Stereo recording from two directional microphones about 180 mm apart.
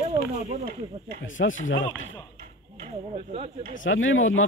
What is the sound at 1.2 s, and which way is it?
Speech, 90° left.